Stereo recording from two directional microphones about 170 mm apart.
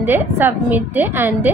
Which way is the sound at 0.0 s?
10° right (ahead or behind).